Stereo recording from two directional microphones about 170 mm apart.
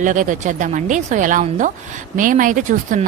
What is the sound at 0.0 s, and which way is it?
A woman's voice, 50° right (ahead or behind).